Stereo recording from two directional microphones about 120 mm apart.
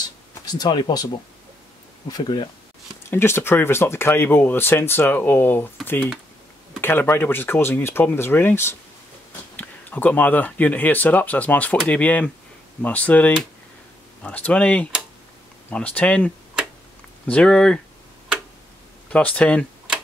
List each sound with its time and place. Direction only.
0.5 s speech: 35° left (ahead or behind)
3.1 s speech: 20° left (ahead or behind)
6.8 s speech: 20° left (ahead or behind)
17.3 s speech: 5° left (ahead or behind)
19.0 s speech: 10° left (ahead or behind)